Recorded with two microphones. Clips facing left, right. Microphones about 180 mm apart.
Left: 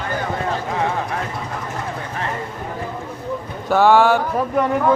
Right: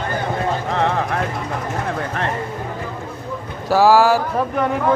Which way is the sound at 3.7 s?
5° right (ahead or behind).